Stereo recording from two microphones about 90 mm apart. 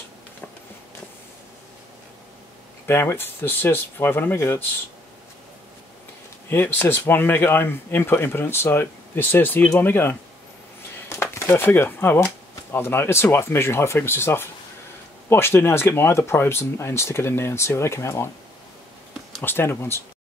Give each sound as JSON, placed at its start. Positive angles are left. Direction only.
{"t": 2.9, "sound": "speech", "side_deg": 30}
{"t": 6.5, "sound": "speech", "side_deg": 25}
{"t": 11.3, "sound": "speech", "side_deg": 30}
{"t": 19.4, "sound": "speech", "side_deg": 25}